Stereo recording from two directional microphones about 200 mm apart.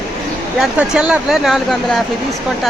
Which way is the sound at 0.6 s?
5° right (ahead or behind).